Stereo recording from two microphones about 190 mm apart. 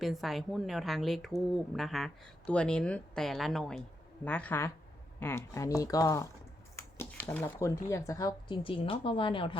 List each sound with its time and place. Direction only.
0.0 s speech: centre (ahead or behind); by 9.6 s 25° left (ahead or behind)